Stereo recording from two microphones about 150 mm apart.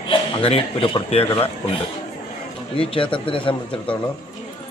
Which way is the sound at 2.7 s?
35° left (ahead or behind).